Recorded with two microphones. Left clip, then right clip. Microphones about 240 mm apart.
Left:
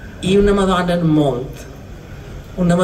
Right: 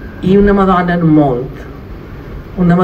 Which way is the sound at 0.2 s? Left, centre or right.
Left.